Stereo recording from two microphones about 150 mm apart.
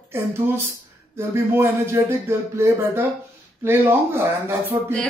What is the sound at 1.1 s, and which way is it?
A man's voice, 15° right (ahead or behind).